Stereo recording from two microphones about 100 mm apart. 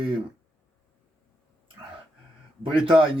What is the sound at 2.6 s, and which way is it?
Speech, 65° right (ahead or behind).